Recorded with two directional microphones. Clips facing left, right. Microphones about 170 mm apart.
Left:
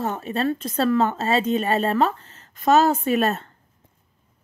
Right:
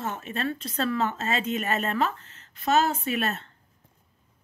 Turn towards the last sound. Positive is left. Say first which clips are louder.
# left 7 dB
turn(degrees=40)  # may be behind; listen again after turning